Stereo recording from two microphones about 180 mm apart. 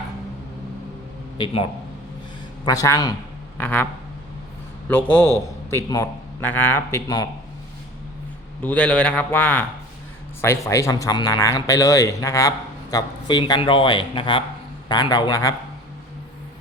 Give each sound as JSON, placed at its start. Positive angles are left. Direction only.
{"t": 1.4, "sound": "speech", "side_deg": 30}
{"t": 2.6, "sound": "a man's voice", "side_deg": 20}
{"t": 4.9, "sound": "a man's voice", "side_deg": 10}
{"t": 8.6, "sound": "a man's voice", "side_deg": 5}